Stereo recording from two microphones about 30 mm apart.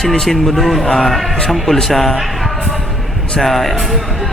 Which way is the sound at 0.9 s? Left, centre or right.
Centre.